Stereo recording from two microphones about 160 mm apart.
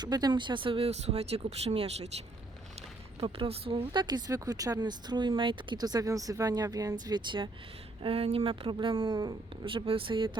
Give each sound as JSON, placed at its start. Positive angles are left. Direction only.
{"t": 0.0, "sound": "speech", "side_deg": -25}
{"t": 3.2, "sound": "speech", "side_deg": -35}